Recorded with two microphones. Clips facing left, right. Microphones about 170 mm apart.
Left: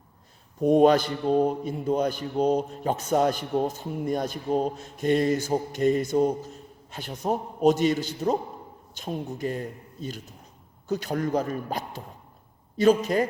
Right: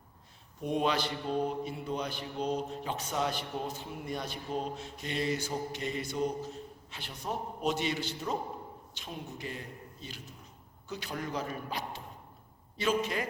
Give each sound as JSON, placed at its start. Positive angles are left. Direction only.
{"t": 0.6, "sound": "a man's voice", "side_deg": 45}